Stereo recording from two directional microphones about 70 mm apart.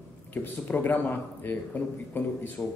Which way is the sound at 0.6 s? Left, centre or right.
Left.